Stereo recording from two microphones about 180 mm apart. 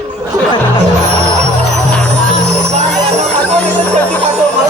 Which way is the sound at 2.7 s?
35° right (ahead or behind).